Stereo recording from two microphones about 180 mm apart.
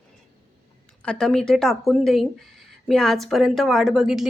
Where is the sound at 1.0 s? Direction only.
5° left (ahead or behind).